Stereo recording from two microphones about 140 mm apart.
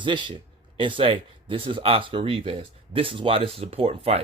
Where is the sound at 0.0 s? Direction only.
35° right (ahead or behind).